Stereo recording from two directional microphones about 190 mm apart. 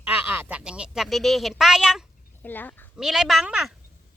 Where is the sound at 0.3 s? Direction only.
10° right (ahead or behind).